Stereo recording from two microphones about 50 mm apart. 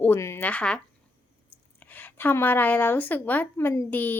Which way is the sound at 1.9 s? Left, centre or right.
Left.